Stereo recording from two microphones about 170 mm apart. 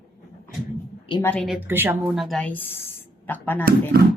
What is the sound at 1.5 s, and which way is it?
Speech, 10° right (ahead or behind).